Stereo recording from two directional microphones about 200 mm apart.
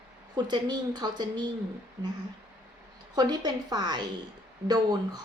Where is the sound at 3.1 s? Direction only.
20° right (ahead or behind).